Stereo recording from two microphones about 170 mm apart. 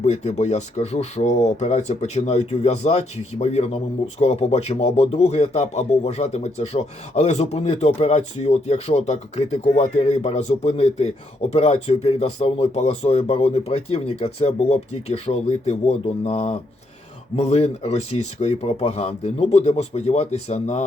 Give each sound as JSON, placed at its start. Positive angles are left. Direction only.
{"t": 0.0, "sound": "speech", "side_deg": 40}